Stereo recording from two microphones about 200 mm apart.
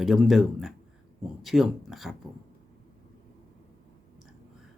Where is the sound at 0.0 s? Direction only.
Centre (ahead or behind).